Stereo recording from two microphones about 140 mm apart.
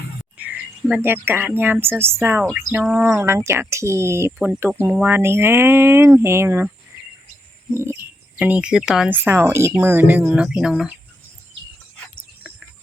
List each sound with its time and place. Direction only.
0.3 s speech: 10° right (ahead or behind)
7.7 s bird: 20° right (ahead or behind)
8.4 s speech: 10° right (ahead or behind)